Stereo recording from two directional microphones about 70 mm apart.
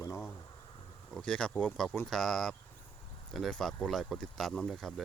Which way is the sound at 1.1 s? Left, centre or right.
Centre.